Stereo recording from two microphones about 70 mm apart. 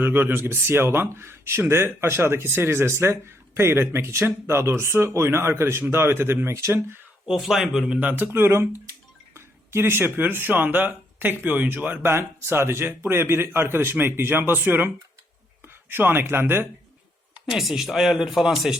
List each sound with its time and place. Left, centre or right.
0.0 s speech: right
7.3 s speech: centre
7.9 s speech: right
12.1 s speech: right
17.4 s speech: centre